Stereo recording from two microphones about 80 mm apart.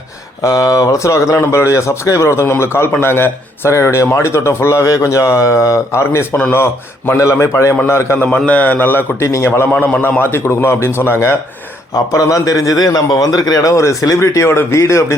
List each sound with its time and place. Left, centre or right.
0.4 s a man's voice: left
9.8 s a man's voice: left
12.1 s a man's voice: left